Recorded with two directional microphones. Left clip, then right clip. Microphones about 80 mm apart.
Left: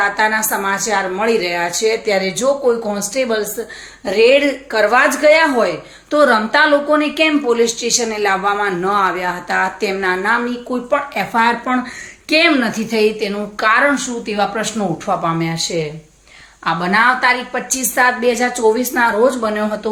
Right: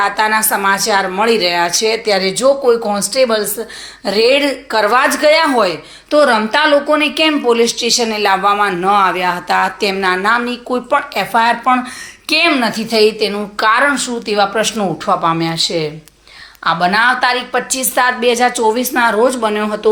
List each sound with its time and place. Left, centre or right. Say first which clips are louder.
0.0 s a woman's voice: right 2 dB; right
12.5 s a woman's voice: right 3 dB; right
15.2 s a woman's voice: right 4 dB; right